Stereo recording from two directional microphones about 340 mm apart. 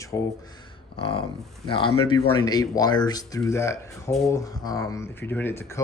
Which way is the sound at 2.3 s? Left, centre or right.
Centre.